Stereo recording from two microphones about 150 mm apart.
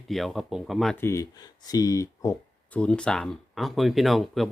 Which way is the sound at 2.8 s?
5° left (ahead or behind).